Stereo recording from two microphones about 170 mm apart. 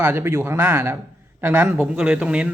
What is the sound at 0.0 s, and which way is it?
A man's voice, 10° right (ahead or behind).